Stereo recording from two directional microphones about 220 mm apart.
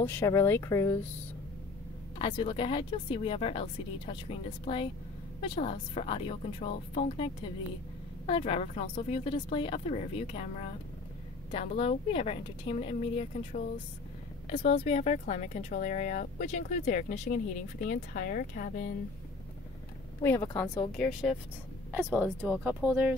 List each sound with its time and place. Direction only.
0.0 s speech: 10° left (ahead or behind)
2.1 s speech: 25° left (ahead or behind)
8.3 s speech: 25° left (ahead or behind)
11.5 s speech: 30° left (ahead or behind)
20.2 s speech: 15° left (ahead or behind)
20.9 s speech: centre (ahead or behind)